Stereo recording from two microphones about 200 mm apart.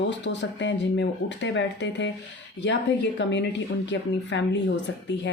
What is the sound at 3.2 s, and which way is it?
Speech, 60° left (ahead or behind).